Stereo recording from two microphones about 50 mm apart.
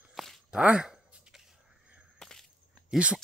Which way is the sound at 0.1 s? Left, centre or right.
Centre.